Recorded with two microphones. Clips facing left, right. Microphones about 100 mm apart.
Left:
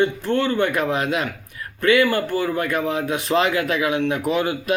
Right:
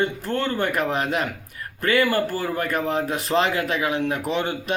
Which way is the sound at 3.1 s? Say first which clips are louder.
Left 2 dB; centre (ahead or behind).